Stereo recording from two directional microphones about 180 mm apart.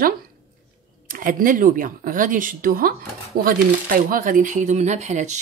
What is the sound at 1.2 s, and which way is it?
Speech, 50° right (ahead or behind).